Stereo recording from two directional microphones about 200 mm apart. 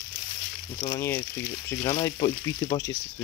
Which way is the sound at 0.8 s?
20° left (ahead or behind).